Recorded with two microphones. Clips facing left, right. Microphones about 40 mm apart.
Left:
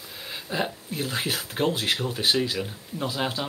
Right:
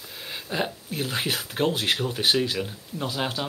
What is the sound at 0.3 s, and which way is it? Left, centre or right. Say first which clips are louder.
Speech: even; centre.